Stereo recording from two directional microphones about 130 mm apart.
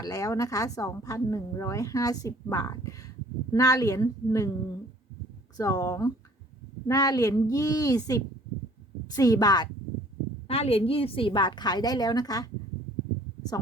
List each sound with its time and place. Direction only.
0.0 s a woman's voice: 25° left (ahead or behind)
5.5 s a woman's voice: 25° left (ahead or behind)
10.5 s a woman's voice: 50° left (ahead or behind); by 12.5 s 30° left (ahead or behind)